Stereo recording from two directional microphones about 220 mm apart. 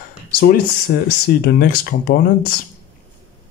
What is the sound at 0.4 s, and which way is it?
Speech, 40° left (ahead or behind).